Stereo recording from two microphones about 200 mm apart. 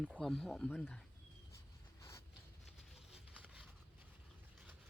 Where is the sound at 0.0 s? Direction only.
Centre (ahead or behind).